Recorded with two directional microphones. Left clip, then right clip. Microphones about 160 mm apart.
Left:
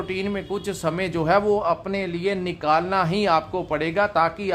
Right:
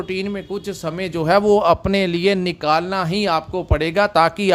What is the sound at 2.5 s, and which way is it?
A man's voice, 35° right (ahead or behind).